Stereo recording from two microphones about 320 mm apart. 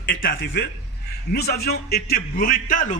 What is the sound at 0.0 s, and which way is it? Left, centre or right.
A man's voice, left.